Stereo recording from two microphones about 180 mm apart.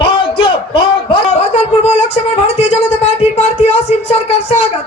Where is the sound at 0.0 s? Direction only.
30° left (ahead or behind).